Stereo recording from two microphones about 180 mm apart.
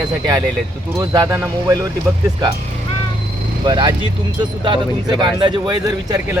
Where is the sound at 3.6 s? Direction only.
25° right (ahead or behind).